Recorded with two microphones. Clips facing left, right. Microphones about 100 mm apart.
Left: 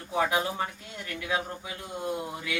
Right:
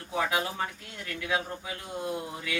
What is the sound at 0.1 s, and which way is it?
Speech, 25° left (ahead or behind).